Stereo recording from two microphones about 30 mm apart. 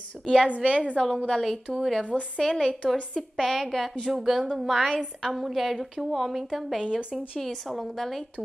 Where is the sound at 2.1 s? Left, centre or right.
Left.